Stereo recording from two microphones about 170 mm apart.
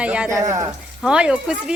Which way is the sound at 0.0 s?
5° right (ahead or behind).